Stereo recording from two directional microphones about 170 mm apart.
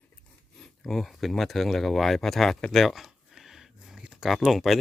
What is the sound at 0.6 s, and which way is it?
Speech, centre (ahead or behind).